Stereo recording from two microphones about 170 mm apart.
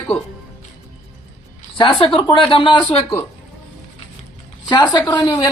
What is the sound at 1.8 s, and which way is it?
Speech, 30° left (ahead or behind).